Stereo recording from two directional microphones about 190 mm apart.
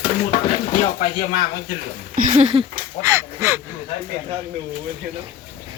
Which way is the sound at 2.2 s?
35° right (ahead or behind).